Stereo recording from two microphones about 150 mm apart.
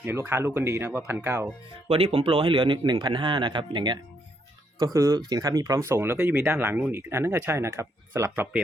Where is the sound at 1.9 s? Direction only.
40° right (ahead or behind); by 8.5 s 15° right (ahead or behind).